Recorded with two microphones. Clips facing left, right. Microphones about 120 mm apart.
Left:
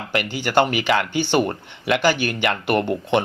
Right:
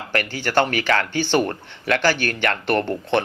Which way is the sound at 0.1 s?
15° left (ahead or behind).